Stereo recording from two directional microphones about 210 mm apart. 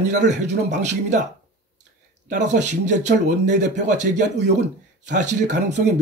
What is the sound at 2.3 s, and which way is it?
Speech, 35° right (ahead or behind).